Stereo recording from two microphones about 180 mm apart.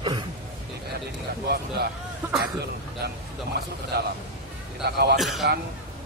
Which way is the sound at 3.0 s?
60° right (ahead or behind).